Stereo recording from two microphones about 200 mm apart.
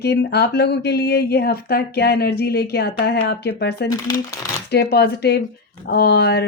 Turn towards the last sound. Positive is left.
turn(degrees=55)  # may be behind; listen again after turning